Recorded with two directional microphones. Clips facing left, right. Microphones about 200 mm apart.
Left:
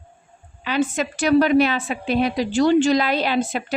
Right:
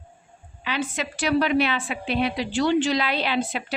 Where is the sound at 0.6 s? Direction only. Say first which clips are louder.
Left 6 dB; 45° left (ahead or behind).